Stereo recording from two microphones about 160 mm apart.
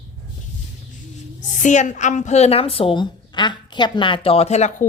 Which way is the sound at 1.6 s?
50° left (ahead or behind).